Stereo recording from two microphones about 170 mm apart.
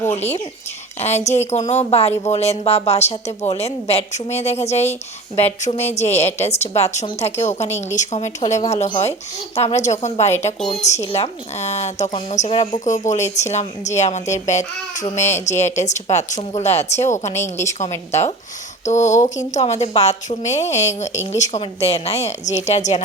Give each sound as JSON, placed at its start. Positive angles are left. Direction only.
{"t": 0.1, "sound": "a woman's voice", "side_deg": 40}
{"t": 17.3, "sound": "a woman's voice", "side_deg": 15}
{"t": 18.1, "sound": "a woman's voice", "side_deg": 40}